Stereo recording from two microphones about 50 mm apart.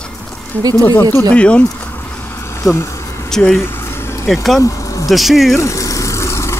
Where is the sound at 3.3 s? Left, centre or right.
Centre.